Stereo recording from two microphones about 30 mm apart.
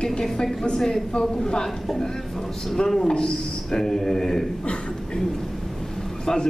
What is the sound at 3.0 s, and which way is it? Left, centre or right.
Speech, left.